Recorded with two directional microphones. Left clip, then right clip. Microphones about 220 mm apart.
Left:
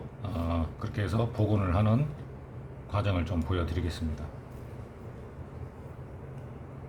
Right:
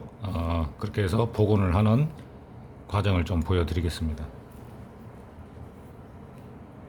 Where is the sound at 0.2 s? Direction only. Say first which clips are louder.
Right 3 dB; 45° right (ahead or behind).